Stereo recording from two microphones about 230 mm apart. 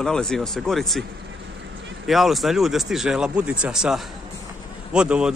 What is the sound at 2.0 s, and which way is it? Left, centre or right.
Speech, centre.